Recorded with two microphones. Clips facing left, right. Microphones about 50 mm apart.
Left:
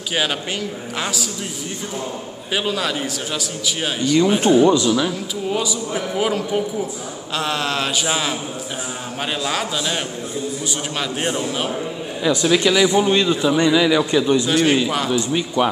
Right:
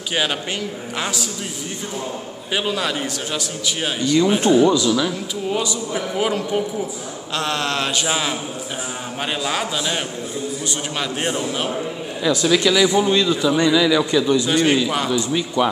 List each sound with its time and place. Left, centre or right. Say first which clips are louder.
0.1 s a man's voice: even; centre
2.5 s a man's voice: even; centre
4.6 s speech: left 1 dB; left
5.5 s a man's voice: even; centre
12.3 s a man's voice: even; left
14.4 s a man's voice: even; centre
15.0 s a man's voice: left 1 dB; centre